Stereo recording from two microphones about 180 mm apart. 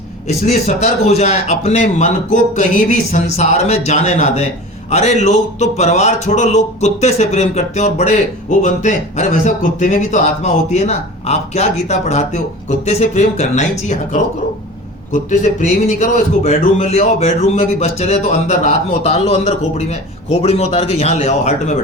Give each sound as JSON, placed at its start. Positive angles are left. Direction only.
{"t": 0.3, "sound": "a man's voice", "side_deg": 40}